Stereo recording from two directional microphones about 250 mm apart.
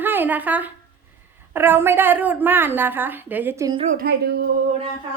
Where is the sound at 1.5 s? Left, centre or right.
Centre.